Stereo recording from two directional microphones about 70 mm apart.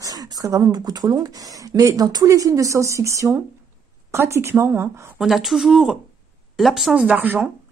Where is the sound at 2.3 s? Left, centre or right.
Right.